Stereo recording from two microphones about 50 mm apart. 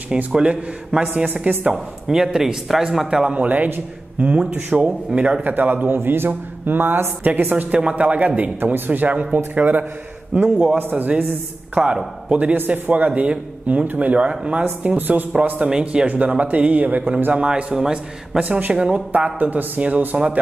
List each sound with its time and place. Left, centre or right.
0.3 s a man's voice: right
1.2 s a man's voice: right
2.0 s a man's voice: centre
3.3 s a man's voice: right
5.4 s a man's voice: right
9.1 s a man's voice: right
10.3 s a man's voice: right
12.5 s a man's voice: right; by 14.6 s centre
14.8 s a man's voice: right
15.6 s a man's voice: right
16.1 s a man's voice: right
17.3 s a man's voice: right
18.5 s a man's voice: right
19.3 s a man's voice: right